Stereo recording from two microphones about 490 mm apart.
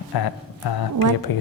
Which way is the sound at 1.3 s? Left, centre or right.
Left.